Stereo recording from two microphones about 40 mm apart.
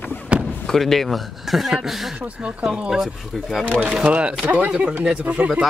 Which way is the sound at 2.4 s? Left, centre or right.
Right.